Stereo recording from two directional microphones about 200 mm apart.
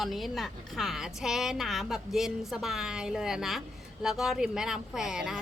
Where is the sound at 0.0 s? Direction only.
Centre (ahead or behind).